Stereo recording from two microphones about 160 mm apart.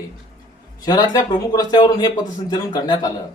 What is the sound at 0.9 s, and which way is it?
A man's voice, 25° left (ahead or behind).